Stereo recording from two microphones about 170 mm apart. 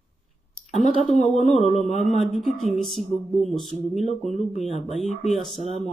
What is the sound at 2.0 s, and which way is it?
Speech, centre (ahead or behind).